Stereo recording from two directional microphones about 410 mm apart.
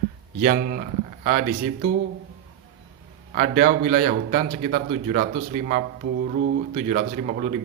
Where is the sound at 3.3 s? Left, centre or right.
Centre.